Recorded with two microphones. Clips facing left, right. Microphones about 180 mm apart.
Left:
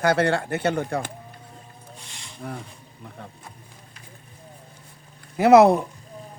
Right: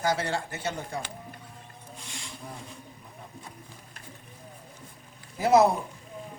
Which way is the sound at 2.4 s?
70° left (ahead or behind).